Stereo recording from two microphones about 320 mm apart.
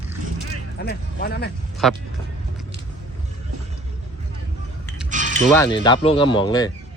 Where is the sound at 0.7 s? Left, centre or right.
Left.